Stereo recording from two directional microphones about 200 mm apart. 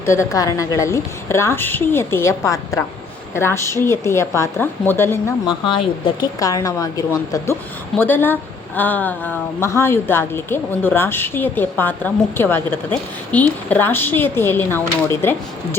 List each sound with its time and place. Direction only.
0.0 s speech: 15° left (ahead or behind)
5.6 s speech: 25° left (ahead or behind)